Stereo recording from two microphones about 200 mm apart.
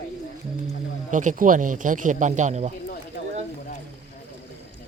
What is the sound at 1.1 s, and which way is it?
Speech, 40° right (ahead or behind).